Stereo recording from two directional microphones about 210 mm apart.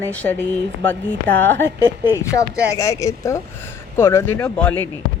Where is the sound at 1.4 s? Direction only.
10° left (ahead or behind).